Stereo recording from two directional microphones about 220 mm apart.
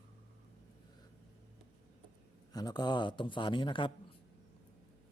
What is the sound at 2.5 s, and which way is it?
Speech, 20° left (ahead or behind).